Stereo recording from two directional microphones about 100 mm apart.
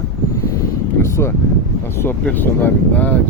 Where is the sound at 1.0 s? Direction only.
25° left (ahead or behind).